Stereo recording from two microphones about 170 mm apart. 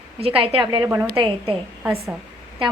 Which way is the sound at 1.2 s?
30° right (ahead or behind).